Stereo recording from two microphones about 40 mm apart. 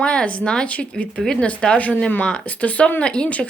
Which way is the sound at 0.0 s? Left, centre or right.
Left.